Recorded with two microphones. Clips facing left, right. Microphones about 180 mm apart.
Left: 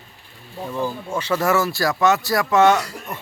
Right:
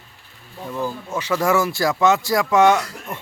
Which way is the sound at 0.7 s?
5° right (ahead or behind).